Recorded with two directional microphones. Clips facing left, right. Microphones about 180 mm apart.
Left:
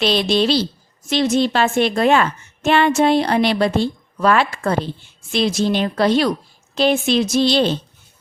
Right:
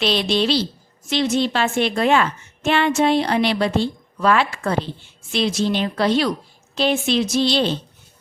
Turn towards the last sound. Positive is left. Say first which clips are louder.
# left 3 dB
turn(degrees=45)  # may be behind; listen again after turning